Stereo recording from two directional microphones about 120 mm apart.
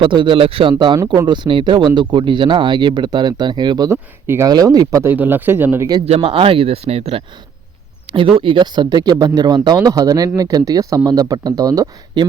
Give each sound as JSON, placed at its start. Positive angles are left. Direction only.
{"t": 0.0, "sound": "speech", "side_deg": -45}
{"t": 3.9, "sound": "speech", "side_deg": -20}
{"t": 4.4, "sound": "speech", "side_deg": -30}
{"t": 5.1, "sound": "speech", "side_deg": -15}
{"t": 6.1, "sound": "speech", "side_deg": -50}
{"t": 8.4, "sound": "speech", "side_deg": -45}